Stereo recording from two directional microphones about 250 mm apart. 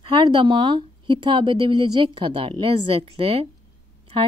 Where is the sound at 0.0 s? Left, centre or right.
Centre.